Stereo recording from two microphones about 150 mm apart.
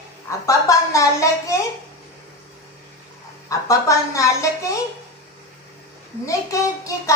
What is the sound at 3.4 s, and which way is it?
Speech, 20° left (ahead or behind).